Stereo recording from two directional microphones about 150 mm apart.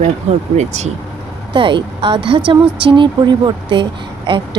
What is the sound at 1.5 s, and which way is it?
Speech, 35° right (ahead or behind).